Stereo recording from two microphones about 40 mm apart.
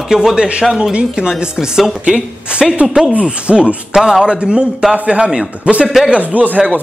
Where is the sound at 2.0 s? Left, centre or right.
Right.